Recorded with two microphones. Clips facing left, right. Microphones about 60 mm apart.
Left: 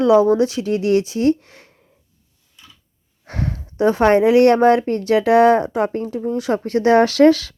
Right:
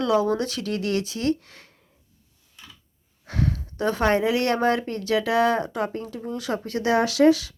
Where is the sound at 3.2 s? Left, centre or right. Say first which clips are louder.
Even; left.